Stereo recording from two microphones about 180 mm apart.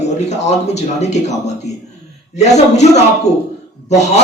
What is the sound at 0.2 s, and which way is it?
Speech, 40° left (ahead or behind).